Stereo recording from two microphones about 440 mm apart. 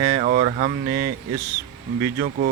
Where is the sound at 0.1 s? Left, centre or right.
Centre.